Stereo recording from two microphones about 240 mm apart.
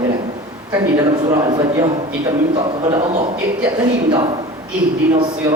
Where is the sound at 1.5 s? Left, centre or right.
Centre.